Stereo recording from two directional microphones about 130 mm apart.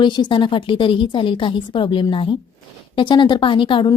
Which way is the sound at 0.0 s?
35° left (ahead or behind).